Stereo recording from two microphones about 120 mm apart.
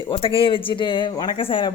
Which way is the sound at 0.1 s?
50° left (ahead or behind).